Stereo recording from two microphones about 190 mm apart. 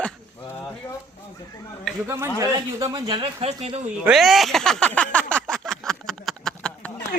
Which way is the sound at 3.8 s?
5° right (ahead or behind).